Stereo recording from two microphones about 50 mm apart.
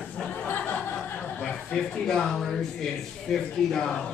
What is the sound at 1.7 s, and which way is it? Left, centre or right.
Speech, centre.